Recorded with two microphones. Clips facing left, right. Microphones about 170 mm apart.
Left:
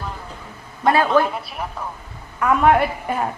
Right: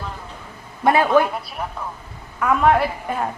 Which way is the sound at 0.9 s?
20° right (ahead or behind).